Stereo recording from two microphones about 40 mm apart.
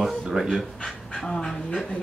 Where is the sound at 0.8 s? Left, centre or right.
Centre.